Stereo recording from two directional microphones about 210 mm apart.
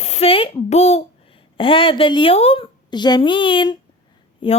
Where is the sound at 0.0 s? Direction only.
30° left (ahead or behind).